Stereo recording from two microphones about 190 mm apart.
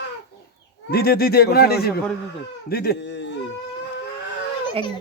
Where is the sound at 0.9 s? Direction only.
55° left (ahead or behind).